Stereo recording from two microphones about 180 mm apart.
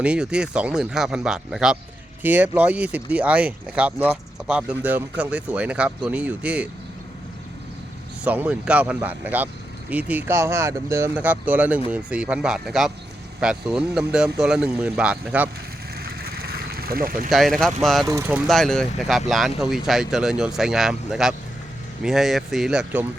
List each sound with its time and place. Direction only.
0.0 s speech: 5° right (ahead or behind)
8.2 s speech: 10° right (ahead or behind)
16.4 s a sound: 60° right (ahead or behind)
17.2 s speech: centre (ahead or behind)
18.1 s speech: 15° right (ahead or behind)
18.4 s speech: centre (ahead or behind)